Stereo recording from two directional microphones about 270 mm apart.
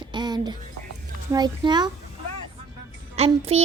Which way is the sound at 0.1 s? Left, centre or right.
Centre.